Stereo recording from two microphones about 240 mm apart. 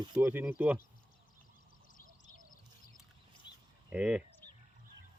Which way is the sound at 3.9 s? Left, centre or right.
Centre.